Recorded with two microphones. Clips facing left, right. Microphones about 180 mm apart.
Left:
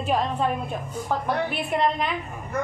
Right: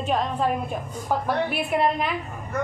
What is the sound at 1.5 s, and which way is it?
Speech, 5° right (ahead or behind).